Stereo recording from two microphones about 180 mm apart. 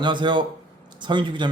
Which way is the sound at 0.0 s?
25° right (ahead or behind).